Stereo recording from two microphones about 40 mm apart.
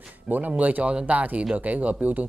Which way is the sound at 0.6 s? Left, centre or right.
Right.